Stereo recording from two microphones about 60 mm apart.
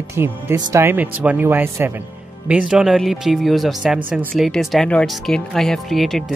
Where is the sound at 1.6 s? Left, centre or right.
Right.